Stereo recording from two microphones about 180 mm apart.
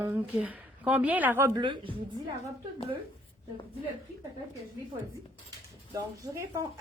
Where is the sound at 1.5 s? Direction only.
25° right (ahead or behind).